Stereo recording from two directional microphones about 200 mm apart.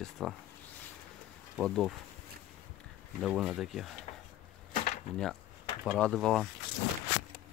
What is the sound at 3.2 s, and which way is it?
Speech, centre (ahead or behind).